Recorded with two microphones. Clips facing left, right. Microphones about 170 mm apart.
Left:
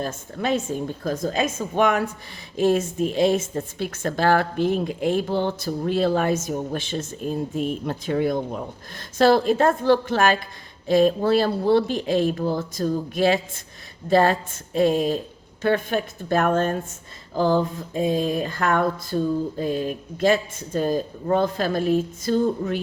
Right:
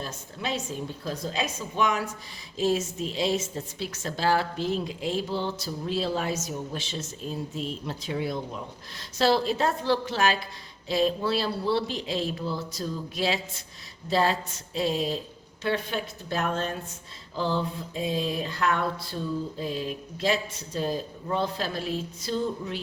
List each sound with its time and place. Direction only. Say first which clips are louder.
0.0 s a woman's voice: left 8 dB; 50° left (ahead or behind)